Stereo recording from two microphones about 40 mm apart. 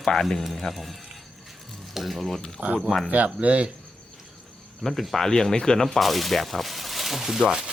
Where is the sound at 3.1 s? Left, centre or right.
Right.